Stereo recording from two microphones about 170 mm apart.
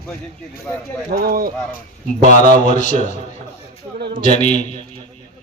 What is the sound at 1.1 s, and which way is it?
Speech, 65° right (ahead or behind).